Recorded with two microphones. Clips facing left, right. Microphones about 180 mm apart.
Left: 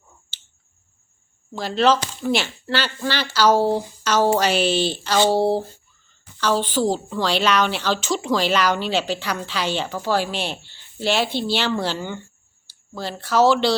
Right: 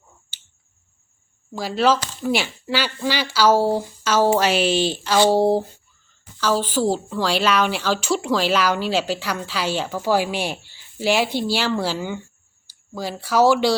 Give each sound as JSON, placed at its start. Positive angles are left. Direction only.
{"t": 1.5, "sound": "a woman's voice", "side_deg": -10}
{"t": 5.4, "sound": "a woman's voice", "side_deg": -15}
{"t": 6.4, "sound": "a woman's voice", "side_deg": -5}